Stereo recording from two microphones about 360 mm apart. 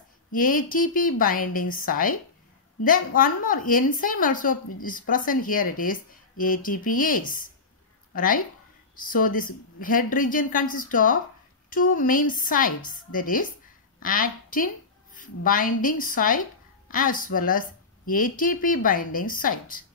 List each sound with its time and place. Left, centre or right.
0.3 s a woman's voice: left